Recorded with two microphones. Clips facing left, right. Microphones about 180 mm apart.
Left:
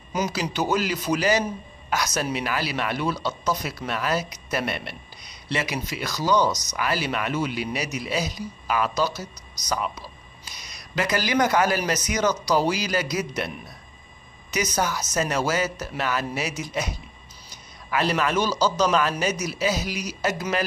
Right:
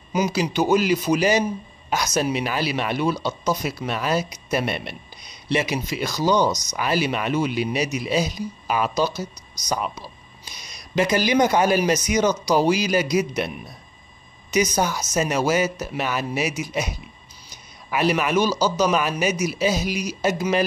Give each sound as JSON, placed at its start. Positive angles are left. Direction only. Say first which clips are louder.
{"t": 0.1, "sound": "speech", "louder": "right 4 dB", "side_deg": -10}
{"t": 11.0, "sound": "speech", "louder": "right 4 dB", "side_deg": -20}
{"t": 14.5, "sound": "speech", "louder": "right 4 dB", "side_deg": -20}